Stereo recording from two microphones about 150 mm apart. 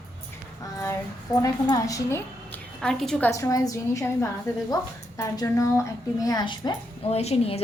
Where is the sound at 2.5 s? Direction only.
5° left (ahead or behind).